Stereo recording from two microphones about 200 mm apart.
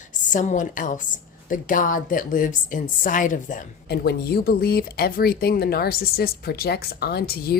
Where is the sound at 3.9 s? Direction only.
50° left (ahead or behind).